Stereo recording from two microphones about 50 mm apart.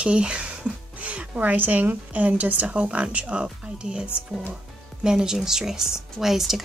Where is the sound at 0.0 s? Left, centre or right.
Right.